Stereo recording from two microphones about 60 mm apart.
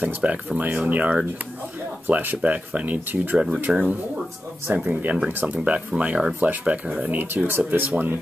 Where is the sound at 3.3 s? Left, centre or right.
Centre.